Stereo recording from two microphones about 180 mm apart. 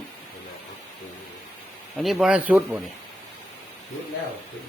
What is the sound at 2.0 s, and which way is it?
Speech, centre (ahead or behind).